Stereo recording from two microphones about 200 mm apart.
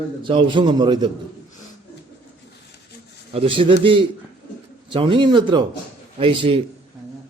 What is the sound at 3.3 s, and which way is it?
A man's voice, 25° right (ahead or behind).